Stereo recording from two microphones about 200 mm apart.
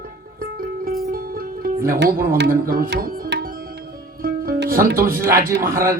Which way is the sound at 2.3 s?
50° right (ahead or behind).